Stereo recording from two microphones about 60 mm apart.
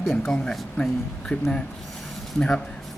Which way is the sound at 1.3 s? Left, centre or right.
Left.